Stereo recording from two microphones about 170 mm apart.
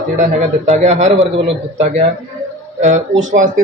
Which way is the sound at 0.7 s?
40° right (ahead or behind).